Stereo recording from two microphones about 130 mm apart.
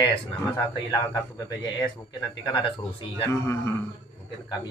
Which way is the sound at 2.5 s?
40° left (ahead or behind).